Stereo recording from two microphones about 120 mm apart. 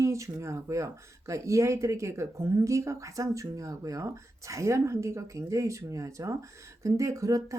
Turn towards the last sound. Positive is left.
turn(degrees=-25)  # may be behind; listen again after turning